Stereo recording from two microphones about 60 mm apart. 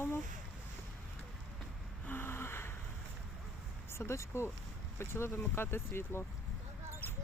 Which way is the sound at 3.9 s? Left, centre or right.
Left.